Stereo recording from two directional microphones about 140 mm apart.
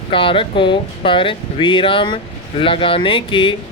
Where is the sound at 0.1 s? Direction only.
40° left (ahead or behind).